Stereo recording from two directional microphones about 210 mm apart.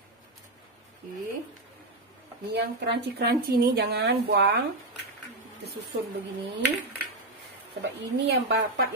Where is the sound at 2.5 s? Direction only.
55° right (ahead or behind).